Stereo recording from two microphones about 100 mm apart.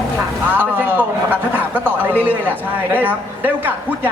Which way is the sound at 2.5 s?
20° right (ahead or behind).